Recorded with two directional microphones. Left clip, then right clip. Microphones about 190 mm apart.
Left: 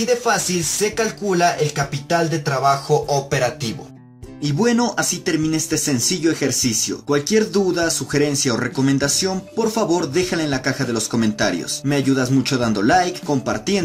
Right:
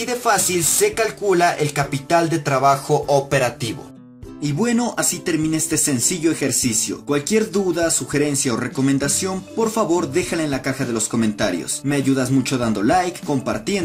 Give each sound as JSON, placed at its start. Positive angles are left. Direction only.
{"t": 0.9, "sound": "speech", "side_deg": -35}
{"t": 4.4, "sound": "speech", "side_deg": 5}